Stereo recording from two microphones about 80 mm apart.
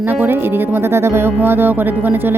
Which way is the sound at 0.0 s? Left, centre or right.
Right.